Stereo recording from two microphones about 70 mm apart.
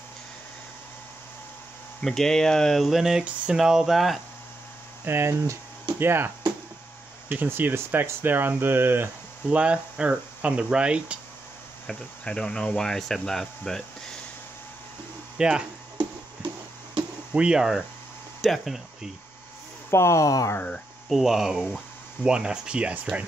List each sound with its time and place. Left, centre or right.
2.0 s speech: centre
5.0 s speech: right
9.5 s speech: centre
11.9 s speech: centre
15.3 s speech: centre
17.3 s speech: centre
19.9 s speech: left
21.1 s speech: centre